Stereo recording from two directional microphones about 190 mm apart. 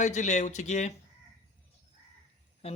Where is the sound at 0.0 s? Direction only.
40° left (ahead or behind).